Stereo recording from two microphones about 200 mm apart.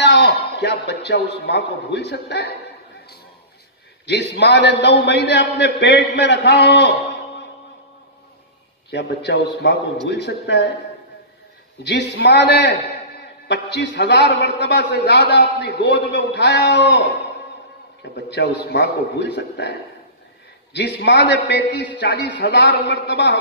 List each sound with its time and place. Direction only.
0.0 s a man's voice: 60° left (ahead or behind)
4.0 s a man's voice: 60° left (ahead or behind)
8.9 s a man's voice: 60° left (ahead or behind)
11.8 s a man's voice: 60° left (ahead or behind)
18.3 s a man's voice: 55° left (ahead or behind)
20.7 s a man's voice: 60° left (ahead or behind)